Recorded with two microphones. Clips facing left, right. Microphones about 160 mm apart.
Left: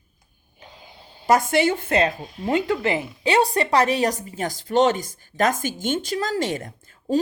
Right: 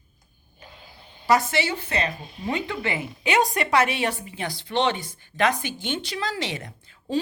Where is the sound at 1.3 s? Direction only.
45° left (ahead or behind).